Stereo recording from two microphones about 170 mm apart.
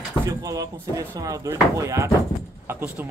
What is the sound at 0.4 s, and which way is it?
Speech, 20° right (ahead or behind).